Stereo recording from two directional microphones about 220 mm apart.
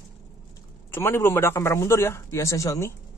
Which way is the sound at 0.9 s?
10° left (ahead or behind).